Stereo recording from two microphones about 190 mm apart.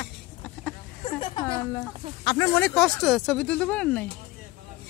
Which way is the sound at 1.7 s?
20° left (ahead or behind).